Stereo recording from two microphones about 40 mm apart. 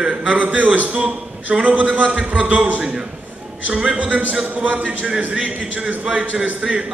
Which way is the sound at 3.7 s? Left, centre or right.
Right.